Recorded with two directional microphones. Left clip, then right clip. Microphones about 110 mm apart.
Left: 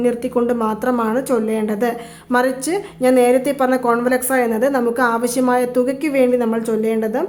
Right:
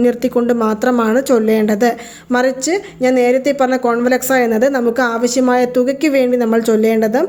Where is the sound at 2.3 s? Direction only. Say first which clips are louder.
Right 3 dB; 25° right (ahead or behind).